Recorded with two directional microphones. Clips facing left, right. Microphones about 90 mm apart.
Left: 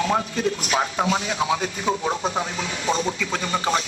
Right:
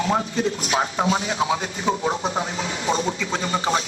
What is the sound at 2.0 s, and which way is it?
Speech, 15° right (ahead or behind).